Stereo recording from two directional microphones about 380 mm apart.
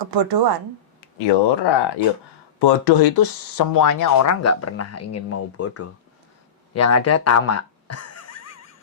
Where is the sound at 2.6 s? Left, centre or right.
Left.